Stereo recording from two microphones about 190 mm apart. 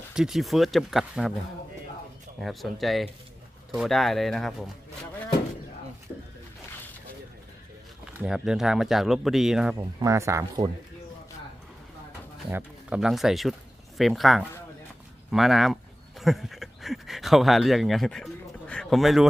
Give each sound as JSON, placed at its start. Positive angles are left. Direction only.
{"t": 0.1, "sound": "speech", "side_deg": 0}
{"t": 2.4, "sound": "speech", "side_deg": 0}
{"t": 8.0, "sound": "speech", "side_deg": -5}
{"t": 9.7, "sound": "speech", "side_deg": -15}
{"t": 12.5, "sound": "speech", "side_deg": -10}